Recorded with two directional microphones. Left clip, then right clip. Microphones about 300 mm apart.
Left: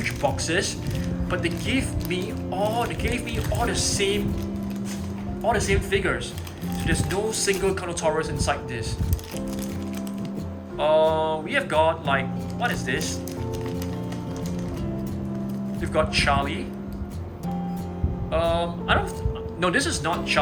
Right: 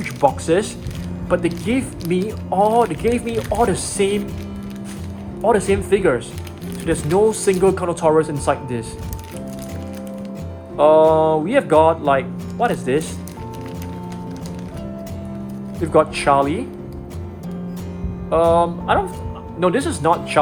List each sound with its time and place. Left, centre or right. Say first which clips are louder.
0.0 s speech: right 7 dB; centre
5.5 s speech: right 7 dB; centre
10.8 s speech: right 8 dB; centre
15.8 s speech: right 7 dB; centre
18.3 s speech: right 9 dB; centre